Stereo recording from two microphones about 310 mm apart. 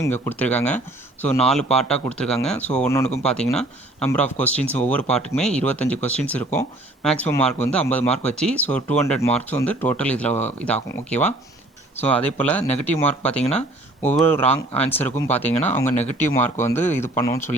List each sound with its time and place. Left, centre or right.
0.0 s speech: centre
14.4 s speech: centre
14.8 s speech: centre